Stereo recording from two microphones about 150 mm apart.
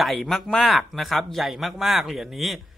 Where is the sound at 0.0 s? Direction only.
Centre (ahead or behind).